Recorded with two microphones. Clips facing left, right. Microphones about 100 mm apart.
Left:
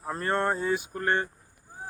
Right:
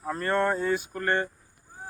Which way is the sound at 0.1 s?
20° left (ahead or behind).